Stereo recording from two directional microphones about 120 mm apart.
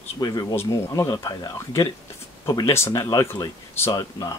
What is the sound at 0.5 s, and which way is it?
Speech, 20° left (ahead or behind).